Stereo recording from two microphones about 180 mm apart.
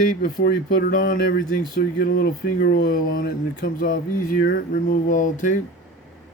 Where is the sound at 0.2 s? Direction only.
55° left (ahead or behind).